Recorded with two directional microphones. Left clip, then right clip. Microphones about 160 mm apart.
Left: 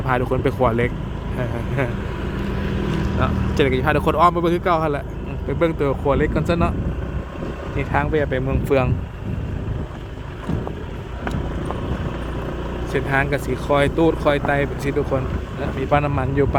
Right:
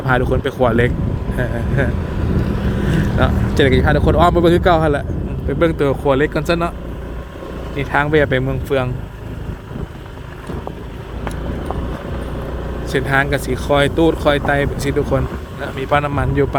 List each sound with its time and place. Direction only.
0.0 s speech: 15° right (ahead or behind)
3.2 s speech: 25° right (ahead or behind)
3.9 s speech: 10° right (ahead or behind)
4.2 s speech: 25° right (ahead or behind)
5.5 s speech: 10° right (ahead or behind)
7.8 s speech: 10° right (ahead or behind)
8.4 s a man's voice: centre (ahead or behind)
12.9 s a man's voice: 15° right (ahead or behind)